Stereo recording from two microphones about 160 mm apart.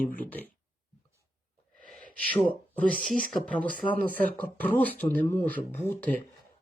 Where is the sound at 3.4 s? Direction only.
10° left (ahead or behind).